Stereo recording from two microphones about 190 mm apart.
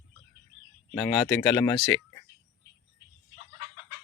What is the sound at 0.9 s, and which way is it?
Speech, 5° left (ahead or behind).